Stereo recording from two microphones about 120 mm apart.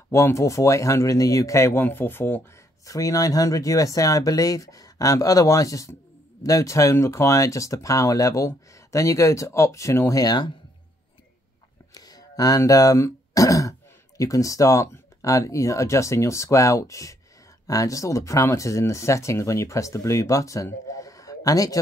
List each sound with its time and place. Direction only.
0.1 s speech: 25° left (ahead or behind)
2.8 s speech: 30° left (ahead or behind)
11.9 s speech: 35° left (ahead or behind)